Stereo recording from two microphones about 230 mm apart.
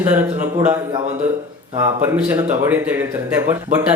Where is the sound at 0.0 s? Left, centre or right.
Centre.